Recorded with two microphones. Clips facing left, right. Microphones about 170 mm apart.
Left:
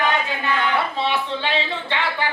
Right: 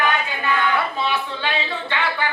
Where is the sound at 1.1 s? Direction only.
25° left (ahead or behind).